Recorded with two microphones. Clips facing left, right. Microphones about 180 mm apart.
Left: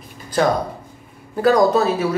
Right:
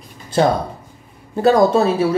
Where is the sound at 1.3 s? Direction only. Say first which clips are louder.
Right 2 dB; 25° right (ahead or behind).